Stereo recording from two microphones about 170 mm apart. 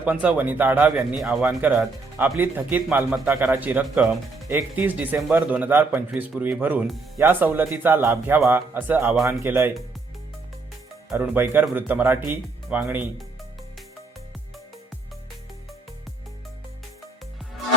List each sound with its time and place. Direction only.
0.0 s speech: 10° right (ahead or behind)
11.1 s speech: 10° right (ahead or behind)